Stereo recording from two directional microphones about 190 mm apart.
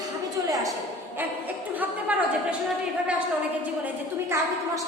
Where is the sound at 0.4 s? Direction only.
20° right (ahead or behind).